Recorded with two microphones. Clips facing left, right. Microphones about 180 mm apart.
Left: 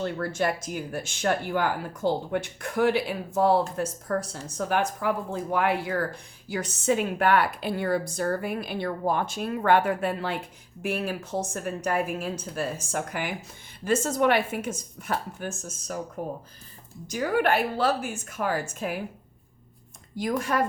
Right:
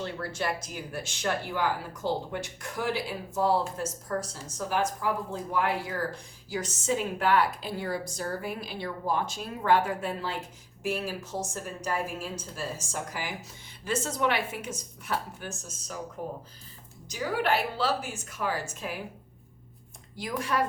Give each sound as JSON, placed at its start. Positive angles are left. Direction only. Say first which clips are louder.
{"t": 0.0, "sound": "a woman's voice", "louder": "left 5 dB", "side_deg": 50}
{"t": 13.8, "sound": "speech", "louder": "left 5 dB", "side_deg": 50}
{"t": 17.1, "sound": "speech", "louder": "left 4 dB", "side_deg": 55}
{"t": 20.1, "sound": "speech", "louder": "left 4 dB", "side_deg": 45}